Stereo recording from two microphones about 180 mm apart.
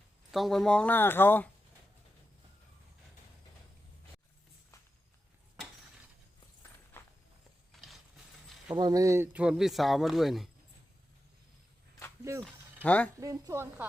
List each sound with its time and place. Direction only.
0.3 s speech: centre (ahead or behind)
7.0 s walk: 15° left (ahead or behind)
7.7 s a sound: centre (ahead or behind)
8.7 s speech: 20° right (ahead or behind); by 10.5 s centre (ahead or behind)
12.4 s speech: 5° left (ahead or behind)
13.1 s a woman's voice: 20° right (ahead or behind)